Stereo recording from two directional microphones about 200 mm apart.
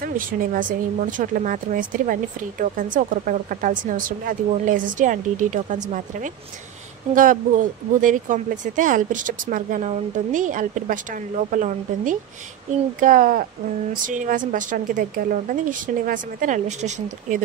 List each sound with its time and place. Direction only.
0.0 s speech: 45° right (ahead or behind)